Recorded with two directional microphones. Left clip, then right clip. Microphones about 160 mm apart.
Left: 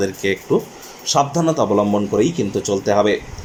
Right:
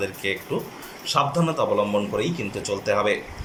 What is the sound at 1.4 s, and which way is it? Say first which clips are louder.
Speech: left 5 dB; 40° left (ahead or behind).